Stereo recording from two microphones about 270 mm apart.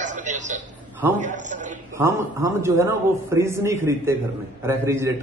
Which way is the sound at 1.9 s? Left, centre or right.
Centre.